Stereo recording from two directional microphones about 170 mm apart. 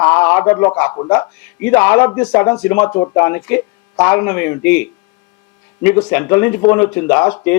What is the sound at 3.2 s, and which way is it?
A man's voice, 15° left (ahead or behind).